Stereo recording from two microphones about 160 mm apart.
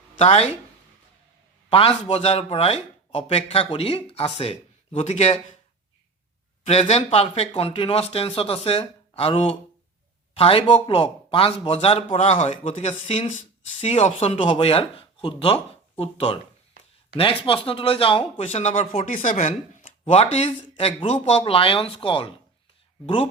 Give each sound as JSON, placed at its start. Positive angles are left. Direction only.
{"t": 0.2, "sound": "speech", "side_deg": 40}
{"t": 1.7, "sound": "speech", "side_deg": 35}
{"t": 6.7, "sound": "speech", "side_deg": 40}
{"t": 19.0, "sound": "speech", "side_deg": 55}